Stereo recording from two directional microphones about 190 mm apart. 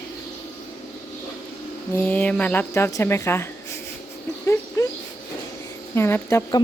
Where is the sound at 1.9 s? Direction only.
10° left (ahead or behind).